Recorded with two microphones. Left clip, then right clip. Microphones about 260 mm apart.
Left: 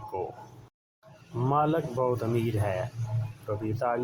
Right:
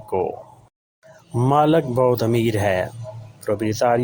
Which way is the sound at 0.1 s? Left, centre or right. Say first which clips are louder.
Right 12 dB; right.